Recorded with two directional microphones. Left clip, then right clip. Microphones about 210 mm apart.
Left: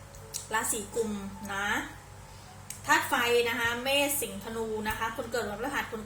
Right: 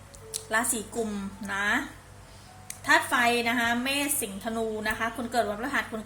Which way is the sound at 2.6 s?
50° right (ahead or behind).